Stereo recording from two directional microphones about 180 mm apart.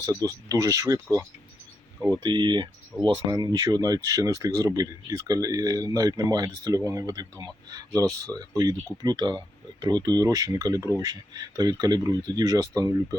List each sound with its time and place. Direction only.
0.0 s speech: 20° right (ahead or behind)
2.2 s speech: 25° right (ahead or behind)